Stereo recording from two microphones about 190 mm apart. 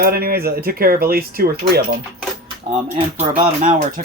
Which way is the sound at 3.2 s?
45° right (ahead or behind).